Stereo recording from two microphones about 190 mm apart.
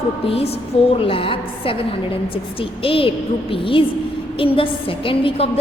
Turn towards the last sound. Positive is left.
turn(degrees=30)  # may be behind; listen again after turning